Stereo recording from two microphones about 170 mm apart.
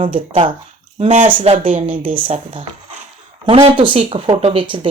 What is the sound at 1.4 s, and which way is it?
Speech, 30° right (ahead or behind).